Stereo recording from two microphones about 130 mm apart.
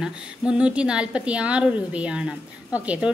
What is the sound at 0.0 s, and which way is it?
A woman's voice, 5° right (ahead or behind).